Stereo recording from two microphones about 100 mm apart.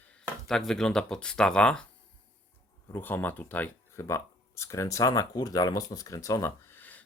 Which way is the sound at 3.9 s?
25° left (ahead or behind).